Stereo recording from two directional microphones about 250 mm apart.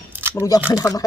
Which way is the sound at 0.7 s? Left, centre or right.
Centre.